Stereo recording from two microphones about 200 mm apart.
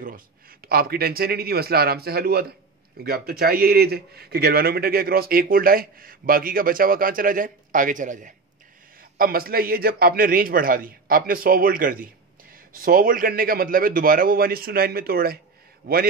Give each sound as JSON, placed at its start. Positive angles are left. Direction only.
{"t": 0.0, "sound": "a man's voice", "side_deg": -45}